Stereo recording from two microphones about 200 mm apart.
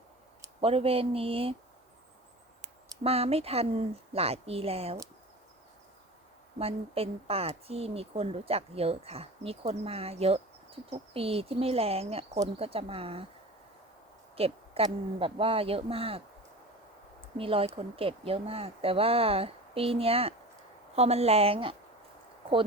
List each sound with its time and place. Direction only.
0.6 s speech: 30° right (ahead or behind)
2.6 s a sound: 30° right (ahead or behind)
4.1 s speech: 30° right (ahead or behind)
6.6 s speech: 30° right (ahead or behind)
14.3 s a woman's voice: 30° right (ahead or behind)